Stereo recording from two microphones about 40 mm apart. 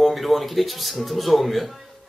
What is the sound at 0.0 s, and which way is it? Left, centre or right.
Speech, centre.